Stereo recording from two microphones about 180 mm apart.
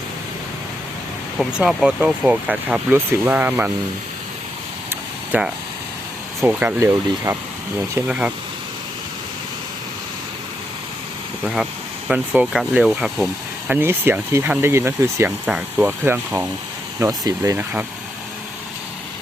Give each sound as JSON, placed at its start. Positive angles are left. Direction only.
{"t": 1.4, "sound": "speech", "side_deg": -5}
{"t": 5.3, "sound": "speech", "side_deg": -10}
{"t": 11.4, "sound": "speech", "side_deg": -5}